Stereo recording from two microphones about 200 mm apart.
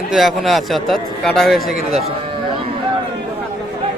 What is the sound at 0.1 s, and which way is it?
Speech, centre (ahead or behind).